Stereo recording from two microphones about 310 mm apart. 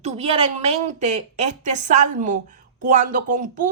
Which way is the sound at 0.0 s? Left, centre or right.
Centre.